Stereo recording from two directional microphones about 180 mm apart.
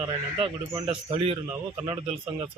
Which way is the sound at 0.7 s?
20° right (ahead or behind).